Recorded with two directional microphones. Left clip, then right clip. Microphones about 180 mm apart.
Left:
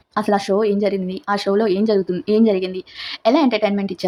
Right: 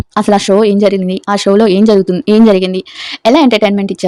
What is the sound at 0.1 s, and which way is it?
A woman's voice, 45° right (ahead or behind).